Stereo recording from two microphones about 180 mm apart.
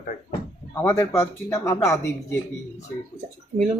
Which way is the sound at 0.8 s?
15° left (ahead or behind).